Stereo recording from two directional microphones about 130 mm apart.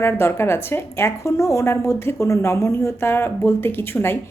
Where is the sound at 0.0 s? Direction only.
20° left (ahead or behind).